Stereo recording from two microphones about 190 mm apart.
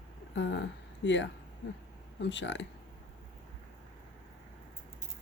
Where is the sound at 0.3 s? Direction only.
70° left (ahead or behind).